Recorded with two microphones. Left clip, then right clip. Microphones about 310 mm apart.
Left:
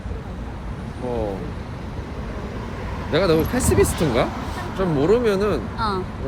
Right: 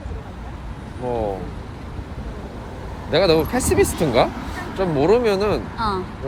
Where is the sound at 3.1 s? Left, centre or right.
Right.